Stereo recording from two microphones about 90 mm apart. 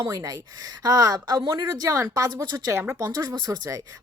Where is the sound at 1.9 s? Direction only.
35° right (ahead or behind).